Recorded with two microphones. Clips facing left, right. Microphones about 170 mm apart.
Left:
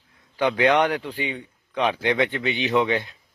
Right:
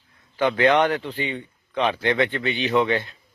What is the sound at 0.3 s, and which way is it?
A man's voice, 15° left (ahead or behind).